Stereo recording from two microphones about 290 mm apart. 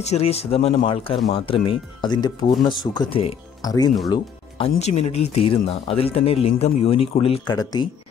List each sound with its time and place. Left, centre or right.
0.1 s speech: left